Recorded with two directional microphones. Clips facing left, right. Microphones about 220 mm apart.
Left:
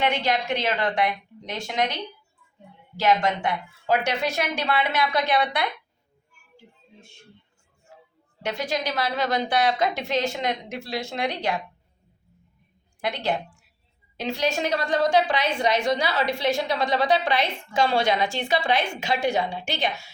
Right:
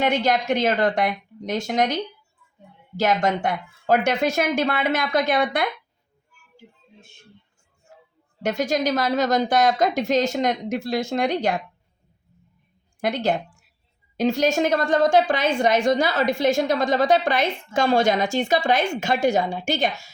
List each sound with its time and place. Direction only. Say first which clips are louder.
0.0 s a woman's voice: right 4 dB; 45° right (ahead or behind)
3.0 s a woman's voice: right 1 dB; 45° right (ahead or behind)
8.4 s a woman's voice: right 5 dB; 45° right (ahead or behind)
13.0 s a woman's voice: right 4 dB; 45° right (ahead or behind)